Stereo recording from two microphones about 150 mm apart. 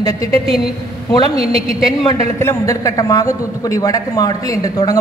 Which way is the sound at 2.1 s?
20° left (ahead or behind).